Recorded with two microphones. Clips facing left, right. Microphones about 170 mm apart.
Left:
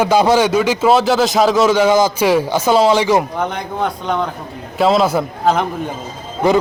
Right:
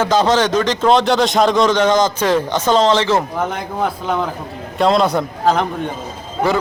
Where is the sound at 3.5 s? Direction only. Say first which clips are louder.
Even; 5° right (ahead or behind).